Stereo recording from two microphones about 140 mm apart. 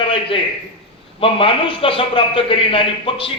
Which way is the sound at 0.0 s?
40° left (ahead or behind).